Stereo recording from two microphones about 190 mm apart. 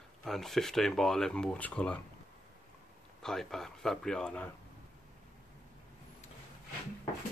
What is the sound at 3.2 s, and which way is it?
Speech, centre (ahead or behind).